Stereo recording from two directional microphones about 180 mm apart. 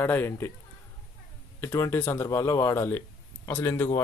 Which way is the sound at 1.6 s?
15° left (ahead or behind).